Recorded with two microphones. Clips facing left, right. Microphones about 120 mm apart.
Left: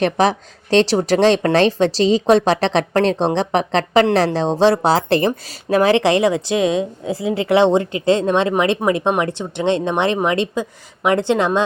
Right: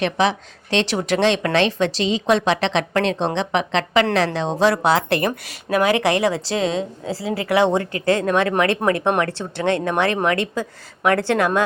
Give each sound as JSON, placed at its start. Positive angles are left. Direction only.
{"t": 0.0, "sound": "a woman's voice", "side_deg": 40}